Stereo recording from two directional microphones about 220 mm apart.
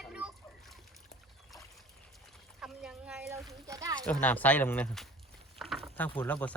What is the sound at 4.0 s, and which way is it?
Speech, 5° left (ahead or behind).